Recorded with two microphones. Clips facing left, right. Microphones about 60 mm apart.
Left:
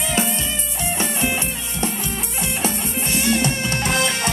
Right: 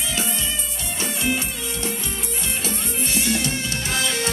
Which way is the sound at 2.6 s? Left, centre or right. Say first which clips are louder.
Left 4 dB; left.